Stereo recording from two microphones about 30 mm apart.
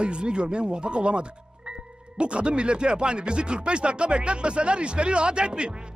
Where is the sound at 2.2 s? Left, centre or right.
Right.